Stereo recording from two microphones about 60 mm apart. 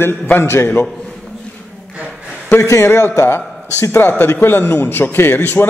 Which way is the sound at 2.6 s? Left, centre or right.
Left.